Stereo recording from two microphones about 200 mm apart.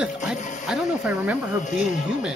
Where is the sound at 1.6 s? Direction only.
40° left (ahead or behind).